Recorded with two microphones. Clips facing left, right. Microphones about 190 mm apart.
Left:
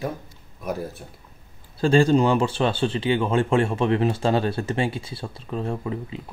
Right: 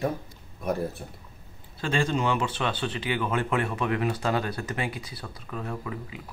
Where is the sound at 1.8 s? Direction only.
35° left (ahead or behind).